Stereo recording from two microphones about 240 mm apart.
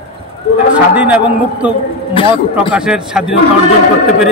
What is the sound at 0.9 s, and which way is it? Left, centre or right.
Speech, centre.